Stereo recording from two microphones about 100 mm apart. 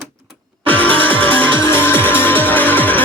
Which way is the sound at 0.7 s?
60° right (ahead or behind).